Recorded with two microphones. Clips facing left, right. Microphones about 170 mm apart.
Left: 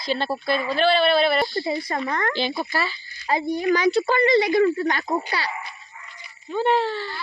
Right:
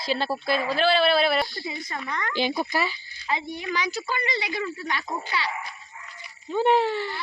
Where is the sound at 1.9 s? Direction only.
40° left (ahead or behind).